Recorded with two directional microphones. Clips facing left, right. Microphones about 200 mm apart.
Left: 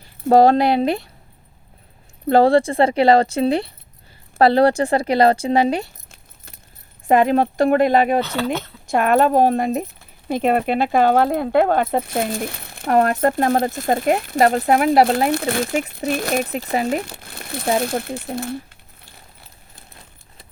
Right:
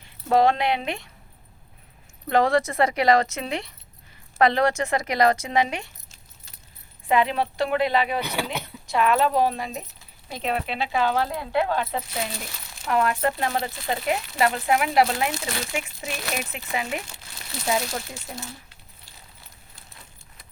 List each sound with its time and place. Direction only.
0.0 s speech: 35° left (ahead or behind)
2.2 s speech: 30° left (ahead or behind)
7.1 s speech: 45° left (ahead or behind)
8.2 s speech: 15° right (ahead or behind)
8.9 s speech: 50° left (ahead or behind)
17.2 s a sound: 55° left (ahead or behind)